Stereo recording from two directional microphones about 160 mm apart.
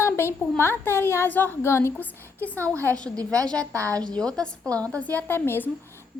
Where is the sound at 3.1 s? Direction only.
20° right (ahead or behind).